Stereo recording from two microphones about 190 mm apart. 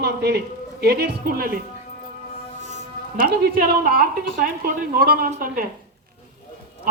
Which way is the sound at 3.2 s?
50° right (ahead or behind).